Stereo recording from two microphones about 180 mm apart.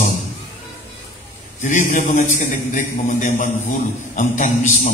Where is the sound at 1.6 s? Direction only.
45° left (ahead or behind).